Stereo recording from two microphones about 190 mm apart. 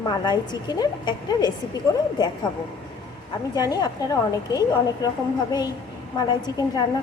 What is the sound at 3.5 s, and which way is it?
A woman's voice, 20° left (ahead or behind).